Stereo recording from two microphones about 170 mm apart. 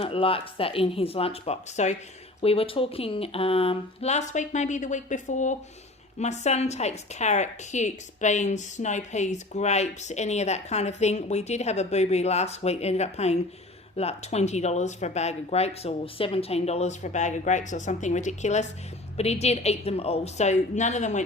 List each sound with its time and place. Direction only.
0.0 s speech: 35° left (ahead or behind)